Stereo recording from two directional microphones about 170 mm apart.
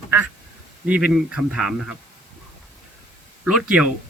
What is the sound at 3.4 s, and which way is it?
Speech, 5° right (ahead or behind).